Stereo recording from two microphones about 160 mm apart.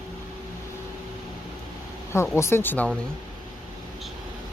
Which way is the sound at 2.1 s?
15° left (ahead or behind).